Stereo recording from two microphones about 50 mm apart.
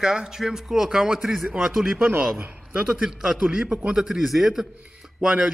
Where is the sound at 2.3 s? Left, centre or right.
Right.